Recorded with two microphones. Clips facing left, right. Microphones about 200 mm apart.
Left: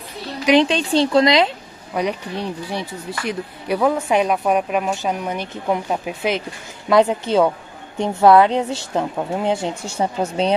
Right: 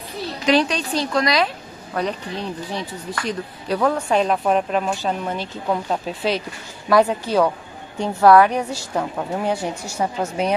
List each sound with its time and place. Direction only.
0.1 s a sound: centre (ahead or behind)
0.5 s a woman's voice: 25° left (ahead or behind)
2.0 s a woman's voice: 10° left (ahead or behind); by 10.5 s 30° left (ahead or behind)